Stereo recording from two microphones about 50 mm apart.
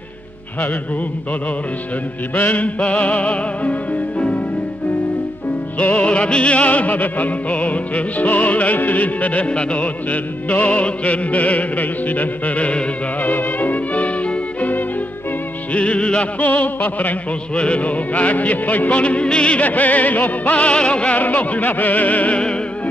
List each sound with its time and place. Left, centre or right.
2.3 s music: left
5.8 s music: left
10.0 s music: left
21.2 s music: left